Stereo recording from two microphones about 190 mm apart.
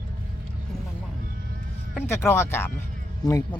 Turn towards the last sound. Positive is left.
turn(degrees=15)  # may be behind; listen again after turning